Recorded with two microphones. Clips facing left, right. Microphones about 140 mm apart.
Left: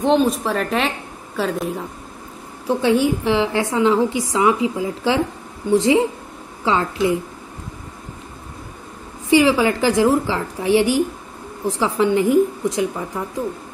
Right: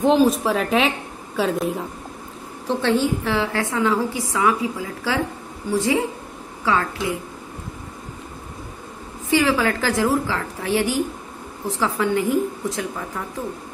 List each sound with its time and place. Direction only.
0.0 s a woman's voice: centre (ahead or behind)
2.6 s a woman's voice: 10° left (ahead or behind)
9.3 s a woman's voice: 15° left (ahead or behind)